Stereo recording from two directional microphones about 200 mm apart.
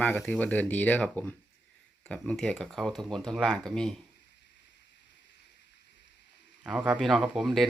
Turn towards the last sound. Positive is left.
turn(degrees=0)  # may be behind; listen again after turning